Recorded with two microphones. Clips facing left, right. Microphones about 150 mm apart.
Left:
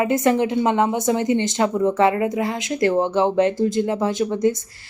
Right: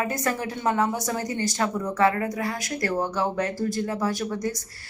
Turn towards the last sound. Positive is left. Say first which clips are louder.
# left 8 dB
turn(degrees=25)  # may be behind; listen again after turning